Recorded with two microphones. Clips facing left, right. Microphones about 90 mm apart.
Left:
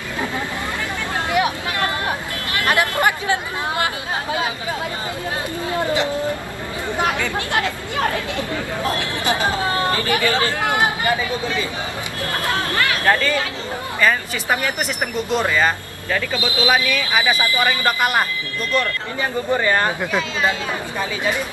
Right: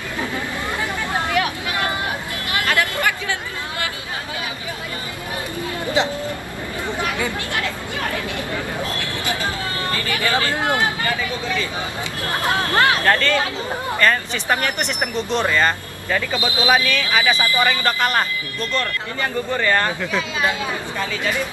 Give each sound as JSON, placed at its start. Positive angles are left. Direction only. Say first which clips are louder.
{"t": 1.4, "sound": "a sound", "louder": "left 3 dB", "side_deg": 20}
{"t": 2.6, "sound": "chatter", "louder": "left 3 dB", "side_deg": 20}
{"t": 8.9, "sound": "speech", "louder": "left 4 dB", "side_deg": 20}
{"t": 12.4, "sound": "speech", "louder": "right 4 dB", "side_deg": -20}
{"t": 13.0, "sound": "speech", "louder": "even", "side_deg": 10}
{"t": 16.3, "sound": "speech", "louder": "even", "side_deg": -20}
{"t": 16.8, "sound": "speech", "louder": "even", "side_deg": 10}
{"t": 19.5, "sound": "speech", "louder": "left 2 dB", "side_deg": 15}